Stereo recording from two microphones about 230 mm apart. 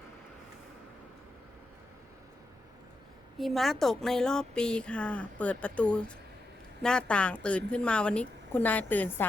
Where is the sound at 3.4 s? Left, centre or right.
Centre.